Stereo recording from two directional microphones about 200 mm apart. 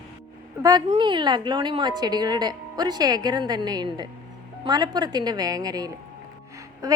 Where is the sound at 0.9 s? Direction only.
25° right (ahead or behind).